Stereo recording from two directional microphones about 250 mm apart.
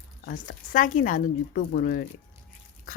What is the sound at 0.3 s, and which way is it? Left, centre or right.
A woman's voice, left.